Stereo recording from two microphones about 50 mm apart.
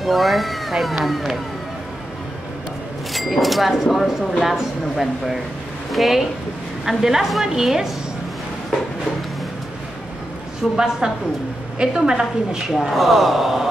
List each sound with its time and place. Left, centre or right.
0.0 s speech: centre
3.1 s a woman's voice: centre
10.6 s speech: centre
11.0 s a woman's voice: centre
12.6 s speech: centre